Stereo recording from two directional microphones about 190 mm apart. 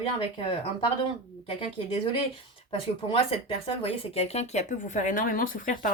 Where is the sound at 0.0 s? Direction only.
30° left (ahead or behind).